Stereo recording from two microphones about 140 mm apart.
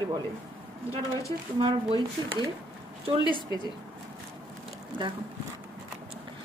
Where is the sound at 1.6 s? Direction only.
35° right (ahead or behind).